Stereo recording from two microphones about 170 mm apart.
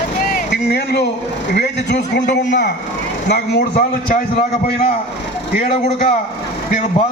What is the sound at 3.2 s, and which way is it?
Speech, 80° left.